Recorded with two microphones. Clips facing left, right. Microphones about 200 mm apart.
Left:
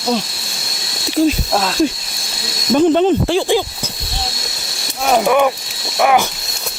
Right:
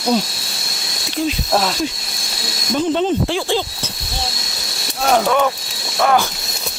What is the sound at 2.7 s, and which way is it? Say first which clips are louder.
Speech: left 5 dB; 55° left (ahead or behind).